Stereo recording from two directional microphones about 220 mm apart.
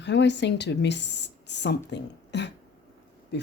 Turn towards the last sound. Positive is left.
turn(degrees=50)  # may be behind; listen again after turning